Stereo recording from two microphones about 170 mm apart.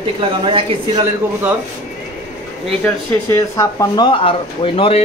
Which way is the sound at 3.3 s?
20° left (ahead or behind).